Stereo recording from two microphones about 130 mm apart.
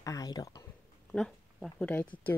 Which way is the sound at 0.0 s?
25° left (ahead or behind).